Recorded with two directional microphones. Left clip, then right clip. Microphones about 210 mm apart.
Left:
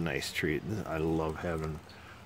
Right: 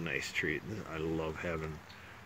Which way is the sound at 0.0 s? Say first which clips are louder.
Left 2 dB; 25° left (ahead or behind).